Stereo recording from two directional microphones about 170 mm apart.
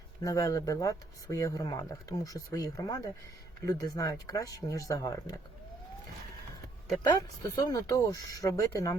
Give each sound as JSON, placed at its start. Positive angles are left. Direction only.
{"t": 0.2, "sound": "speech", "side_deg": 20}
{"t": 7.0, "sound": "speech", "side_deg": 25}